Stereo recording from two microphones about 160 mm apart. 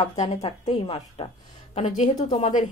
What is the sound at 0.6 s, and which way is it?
Speech, 30° left (ahead or behind).